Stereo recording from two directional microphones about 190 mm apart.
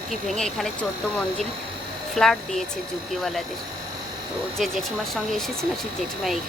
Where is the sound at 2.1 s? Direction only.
Centre (ahead or behind).